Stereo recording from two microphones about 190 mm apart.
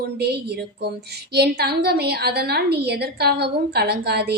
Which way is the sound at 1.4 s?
60° right (ahead or behind).